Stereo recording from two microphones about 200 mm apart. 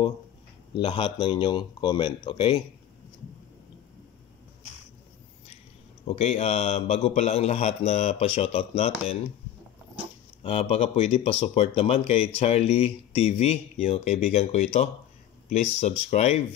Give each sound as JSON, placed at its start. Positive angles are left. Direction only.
{"t": 0.7, "sound": "speech", "side_deg": 25}
{"t": 6.0, "sound": "a man's voice", "side_deg": 30}
{"t": 10.4, "sound": "a man's voice", "side_deg": 30}